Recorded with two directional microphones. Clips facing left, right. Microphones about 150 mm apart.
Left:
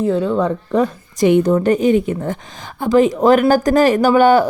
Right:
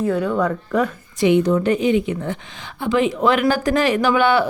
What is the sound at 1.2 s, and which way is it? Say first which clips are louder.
Speech: left 3 dB; 50° left (ahead or behind).